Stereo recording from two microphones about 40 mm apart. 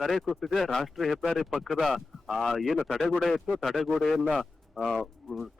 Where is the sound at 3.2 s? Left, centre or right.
Centre.